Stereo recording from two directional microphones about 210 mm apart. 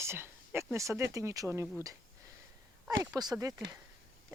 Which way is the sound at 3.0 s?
20° right (ahead or behind).